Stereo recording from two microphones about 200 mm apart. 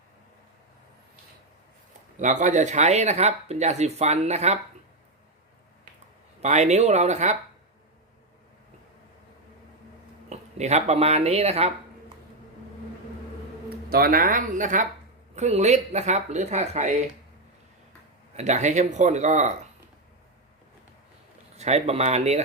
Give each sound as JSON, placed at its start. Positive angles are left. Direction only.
{"t": 2.1, "sound": "speech", "side_deg": -40}
{"t": 6.4, "sound": "speech", "side_deg": -35}
{"t": 10.2, "sound": "speech", "side_deg": -35}
{"t": 13.9, "sound": "speech", "side_deg": -45}
{"t": 18.3, "sound": "speech", "side_deg": -35}
{"t": 21.5, "sound": "speech", "side_deg": -35}